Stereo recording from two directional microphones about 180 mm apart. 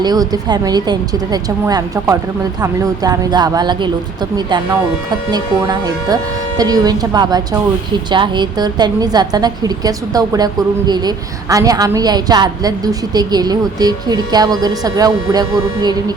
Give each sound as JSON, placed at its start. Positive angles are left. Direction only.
{"t": 0.0, "sound": "a woman's voice", "side_deg": -20}